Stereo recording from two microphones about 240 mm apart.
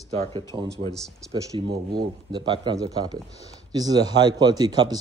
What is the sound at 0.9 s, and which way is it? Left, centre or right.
Speech, centre.